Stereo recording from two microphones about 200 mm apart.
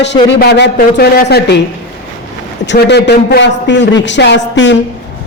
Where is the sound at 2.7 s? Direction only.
55° left (ahead or behind).